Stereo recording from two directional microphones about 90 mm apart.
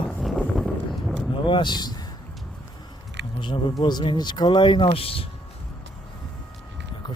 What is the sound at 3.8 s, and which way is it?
Speech, 65° left (ahead or behind).